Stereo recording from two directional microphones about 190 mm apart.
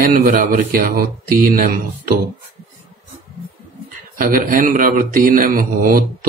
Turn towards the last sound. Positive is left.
turn(degrees=-50)  # may be behind; listen again after turning